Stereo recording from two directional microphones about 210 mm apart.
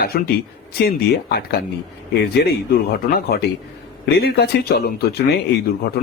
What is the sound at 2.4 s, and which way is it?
Speech, 50° left (ahead or behind).